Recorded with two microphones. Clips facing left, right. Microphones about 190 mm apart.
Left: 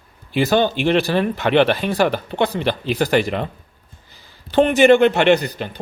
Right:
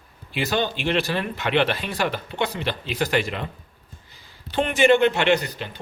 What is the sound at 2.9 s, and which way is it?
Speech, 50° left (ahead or behind).